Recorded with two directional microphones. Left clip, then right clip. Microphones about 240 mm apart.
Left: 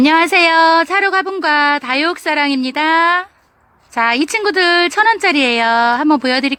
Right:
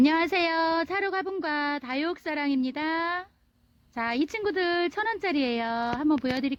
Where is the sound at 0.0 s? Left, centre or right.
Centre.